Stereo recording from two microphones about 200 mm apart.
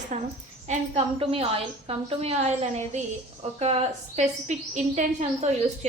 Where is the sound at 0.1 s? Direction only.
35° right (ahead or behind).